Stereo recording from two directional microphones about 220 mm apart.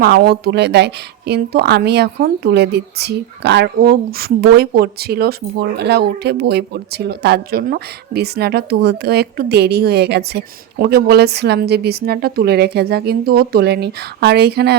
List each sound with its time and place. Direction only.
0.0 s a woman's voice: 45° right (ahead or behind)